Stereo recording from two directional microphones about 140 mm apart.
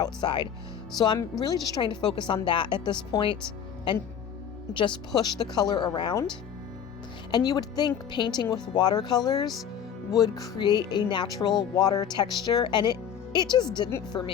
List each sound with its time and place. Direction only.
0.0 s a woman's voice: 35° left (ahead or behind)
4.7 s speech: 35° left (ahead or behind)
7.3 s a woman's voice: 30° left (ahead or behind)